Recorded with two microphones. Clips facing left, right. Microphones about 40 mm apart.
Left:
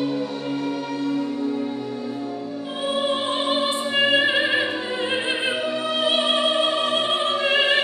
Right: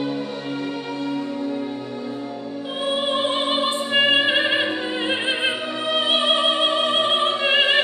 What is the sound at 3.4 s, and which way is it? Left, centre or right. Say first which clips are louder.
Opera: right 1 dB; right.